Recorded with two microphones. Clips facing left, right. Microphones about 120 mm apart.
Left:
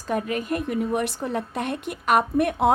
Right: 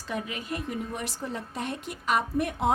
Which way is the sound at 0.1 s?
50° left (ahead or behind).